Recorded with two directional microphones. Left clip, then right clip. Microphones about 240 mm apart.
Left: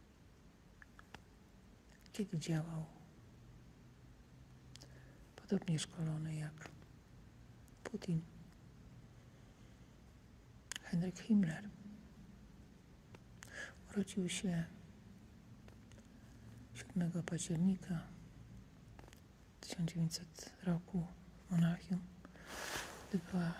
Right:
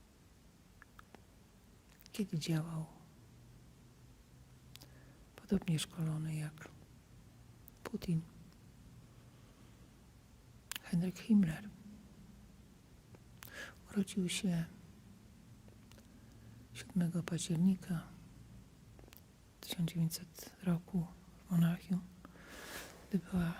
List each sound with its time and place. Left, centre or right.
2.1 s speech: right
5.3 s speech: right
7.8 s a sound: right
10.7 s speech: right
13.4 s a sound: right
16.7 s speech: right
19.5 s speech: right